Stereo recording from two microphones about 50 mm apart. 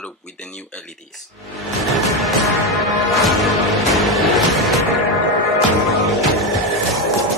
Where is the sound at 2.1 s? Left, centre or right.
Centre.